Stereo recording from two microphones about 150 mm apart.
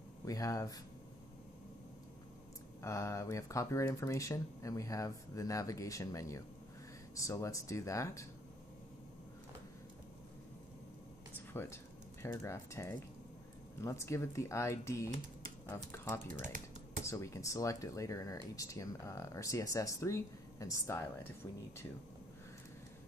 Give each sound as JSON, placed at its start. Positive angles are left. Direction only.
{"t": 0.2, "sound": "speech", "side_deg": 25}
{"t": 2.8, "sound": "speech", "side_deg": 20}
{"t": 11.3, "sound": "speech", "side_deg": 15}